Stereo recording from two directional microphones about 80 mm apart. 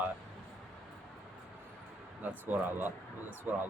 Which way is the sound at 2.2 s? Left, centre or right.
Right.